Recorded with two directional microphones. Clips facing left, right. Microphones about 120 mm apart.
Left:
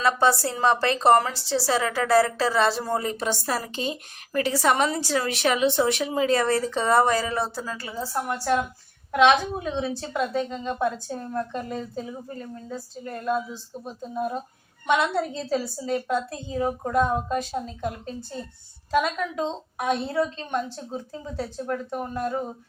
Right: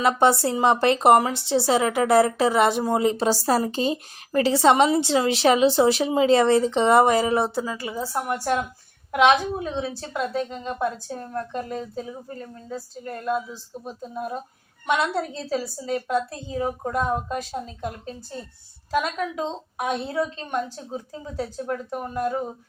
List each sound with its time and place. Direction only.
0.0 s a woman's voice: 20° right (ahead or behind)
3.2 s a woman's voice: 35° right (ahead or behind); by 22.4 s 5° right (ahead or behind)